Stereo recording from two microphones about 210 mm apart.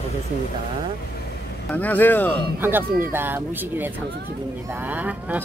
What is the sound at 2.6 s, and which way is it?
Speech, 10° right (ahead or behind).